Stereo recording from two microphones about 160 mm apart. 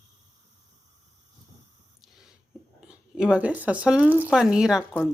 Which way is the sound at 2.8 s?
5° right (ahead or behind).